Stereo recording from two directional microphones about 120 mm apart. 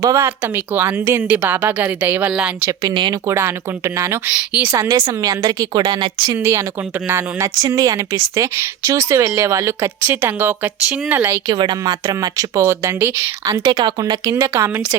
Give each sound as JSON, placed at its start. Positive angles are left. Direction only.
{"t": 0.0, "sound": "speech", "side_deg": -25}
{"t": 2.8, "sound": "speech", "side_deg": -40}
{"t": 3.2, "sound": "speech", "side_deg": -20}
{"t": 4.4, "sound": "speech", "side_deg": -10}
{"t": 4.8, "sound": "speech", "side_deg": -35}
{"t": 6.3, "sound": "speech", "side_deg": -20}
{"t": 11.4, "sound": "speech", "side_deg": -40}